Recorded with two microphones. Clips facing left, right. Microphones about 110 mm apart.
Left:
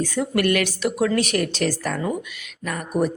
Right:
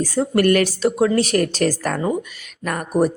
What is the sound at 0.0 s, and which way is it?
A woman's voice, 35° right (ahead or behind).